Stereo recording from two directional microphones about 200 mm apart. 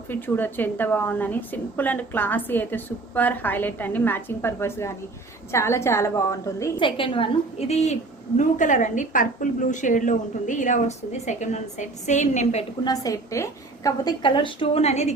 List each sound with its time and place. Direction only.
0.1 s a woman's voice: 10° left (ahead or behind)
6.8 s a woman's voice: 25° left (ahead or behind)
12.8 s a woman's voice: 20° left (ahead or behind)